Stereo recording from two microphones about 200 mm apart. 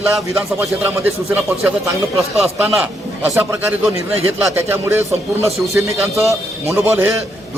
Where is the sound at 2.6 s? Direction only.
10° right (ahead or behind).